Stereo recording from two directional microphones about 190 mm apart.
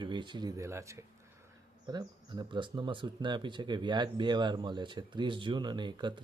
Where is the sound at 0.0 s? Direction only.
25° right (ahead or behind).